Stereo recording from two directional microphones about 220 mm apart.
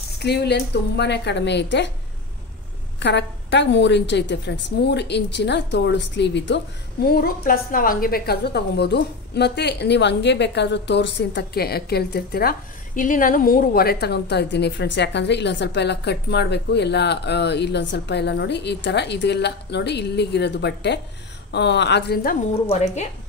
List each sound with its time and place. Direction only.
0.2 s a woman's voice: 50° left (ahead or behind)
3.0 s a woman's voice: 55° left (ahead or behind); by 23.0 s 30° left (ahead or behind)